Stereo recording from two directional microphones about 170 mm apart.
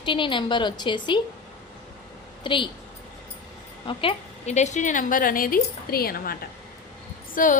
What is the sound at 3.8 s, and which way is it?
A woman's voice, 30° left (ahead or behind).